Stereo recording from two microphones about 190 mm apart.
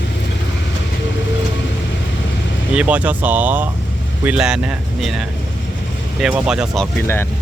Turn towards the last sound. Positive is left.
turn(degrees=0)  # may be behind; listen again after turning